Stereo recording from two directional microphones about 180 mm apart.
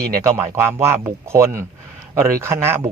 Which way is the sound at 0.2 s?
15° right (ahead or behind).